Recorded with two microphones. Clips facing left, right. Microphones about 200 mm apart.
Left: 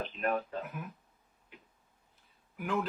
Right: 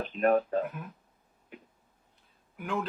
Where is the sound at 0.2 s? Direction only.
50° right (ahead or behind).